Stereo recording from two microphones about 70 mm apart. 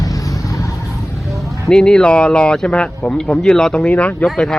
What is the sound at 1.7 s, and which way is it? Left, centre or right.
Speech, centre.